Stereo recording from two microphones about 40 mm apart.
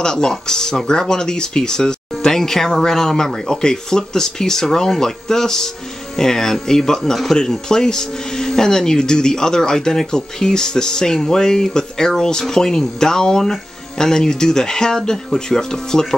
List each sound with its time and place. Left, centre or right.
0.0 s speech: centre